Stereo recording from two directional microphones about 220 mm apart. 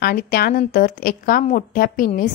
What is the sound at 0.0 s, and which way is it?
A woman's voice, 40° left (ahead or behind).